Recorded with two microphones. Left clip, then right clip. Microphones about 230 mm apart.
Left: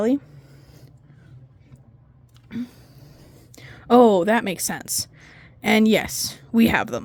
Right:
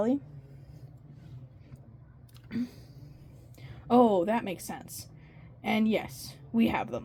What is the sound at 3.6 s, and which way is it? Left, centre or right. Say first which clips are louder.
A woman's voice: left 9 dB; left.